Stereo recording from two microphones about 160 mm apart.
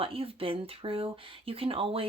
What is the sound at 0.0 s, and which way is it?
Speech, 35° right (ahead or behind).